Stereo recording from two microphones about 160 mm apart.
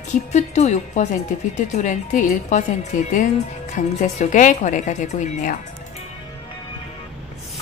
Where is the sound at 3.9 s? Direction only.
45° left (ahead or behind).